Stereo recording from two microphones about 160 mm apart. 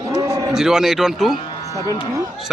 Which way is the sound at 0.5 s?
5° right (ahead or behind).